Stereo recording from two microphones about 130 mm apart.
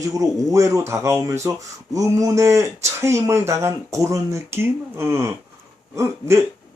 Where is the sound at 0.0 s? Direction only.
25° right (ahead or behind).